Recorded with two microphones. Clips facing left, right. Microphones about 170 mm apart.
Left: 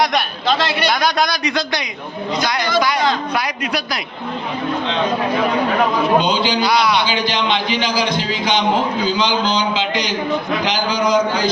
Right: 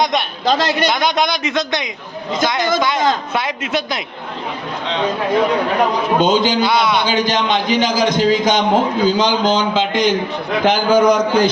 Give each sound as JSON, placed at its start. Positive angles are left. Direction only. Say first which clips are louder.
{"t": 0.0, "sound": "a sound", "louder": "even", "side_deg": -20}
{"t": 0.4, "sound": "a man's voice", "louder": "right 4 dB", "side_deg": -45}
{"t": 0.9, "sound": "a man's voice", "louder": "right 1 dB", "side_deg": -20}
{"t": 6.1, "sound": "a man's voice", "louder": "right 2 dB", "side_deg": -45}
{"t": 6.7, "sound": "a man's voice", "louder": "even", "side_deg": -25}
{"t": 7.0, "sound": "a man's voice", "louder": "right 2 dB", "side_deg": -45}